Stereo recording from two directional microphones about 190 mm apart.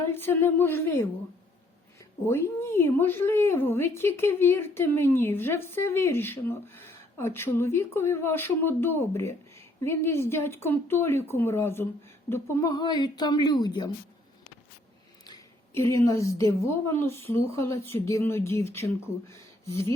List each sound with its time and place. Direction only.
0.1 s a woman's voice: 10° left (ahead or behind)
2.2 s a woman's voice: 15° left (ahead or behind)
15.3 s a woman's voice: 15° left (ahead or behind)